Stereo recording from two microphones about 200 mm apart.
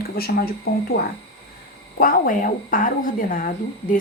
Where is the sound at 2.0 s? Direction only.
45° left (ahead or behind).